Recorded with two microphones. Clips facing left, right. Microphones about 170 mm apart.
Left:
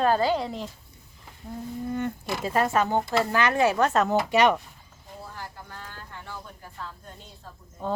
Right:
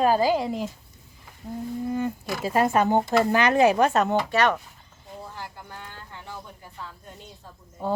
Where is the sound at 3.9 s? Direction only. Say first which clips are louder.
Even; centre (ahead or behind).